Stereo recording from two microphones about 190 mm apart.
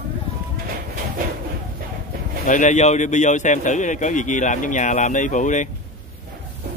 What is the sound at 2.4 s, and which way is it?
A man's voice, 40° left (ahead or behind).